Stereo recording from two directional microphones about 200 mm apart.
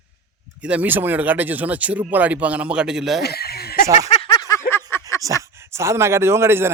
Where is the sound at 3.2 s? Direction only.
50° left (ahead or behind).